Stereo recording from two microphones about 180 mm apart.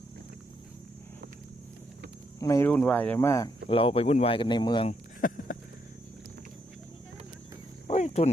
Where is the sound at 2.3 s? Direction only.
15° left (ahead or behind).